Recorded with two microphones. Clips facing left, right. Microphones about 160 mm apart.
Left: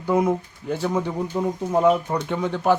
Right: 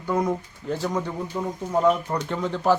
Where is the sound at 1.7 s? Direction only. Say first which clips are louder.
Left 2 dB; 10° left (ahead or behind).